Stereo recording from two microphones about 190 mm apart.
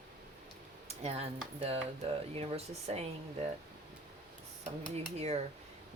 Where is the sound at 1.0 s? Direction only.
30° right (ahead or behind).